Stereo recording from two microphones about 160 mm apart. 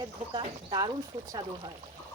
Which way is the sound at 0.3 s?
30° right (ahead or behind).